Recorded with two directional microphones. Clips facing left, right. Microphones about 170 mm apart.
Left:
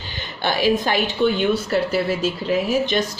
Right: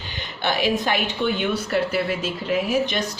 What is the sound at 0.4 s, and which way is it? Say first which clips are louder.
Speech: left 3 dB; 35° left (ahead or behind).